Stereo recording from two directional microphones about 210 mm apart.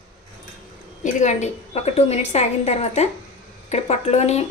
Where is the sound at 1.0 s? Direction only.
35° left (ahead or behind).